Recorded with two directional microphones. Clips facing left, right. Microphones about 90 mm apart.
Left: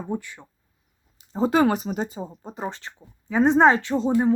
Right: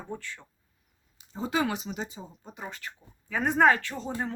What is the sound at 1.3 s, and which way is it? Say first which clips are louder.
Speech: left 9 dB; 45° left (ahead or behind).